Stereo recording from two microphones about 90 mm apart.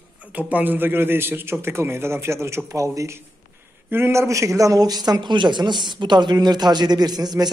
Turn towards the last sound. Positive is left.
turn(degrees=-50)  # may be behind; listen again after turning